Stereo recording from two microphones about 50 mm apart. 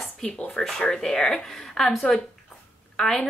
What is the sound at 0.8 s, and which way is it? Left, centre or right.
Speech, centre.